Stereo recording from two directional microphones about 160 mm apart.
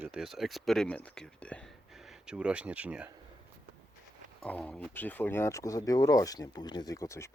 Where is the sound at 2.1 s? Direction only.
5° right (ahead or behind).